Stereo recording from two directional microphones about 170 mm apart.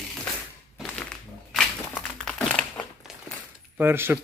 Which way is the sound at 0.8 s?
5° left (ahead or behind).